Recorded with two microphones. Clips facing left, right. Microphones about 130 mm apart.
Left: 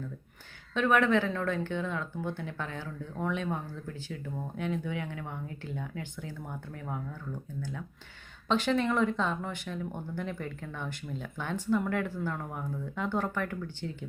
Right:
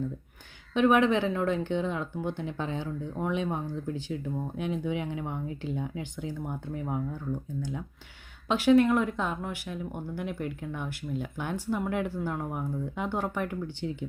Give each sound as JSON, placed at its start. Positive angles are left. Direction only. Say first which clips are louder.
{"t": 0.7, "sound": "speech", "louder": "right 3 dB", "side_deg": -15}